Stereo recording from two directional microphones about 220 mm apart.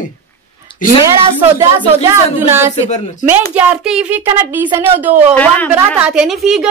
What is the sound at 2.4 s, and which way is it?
A woman's voice, 10° right (ahead or behind).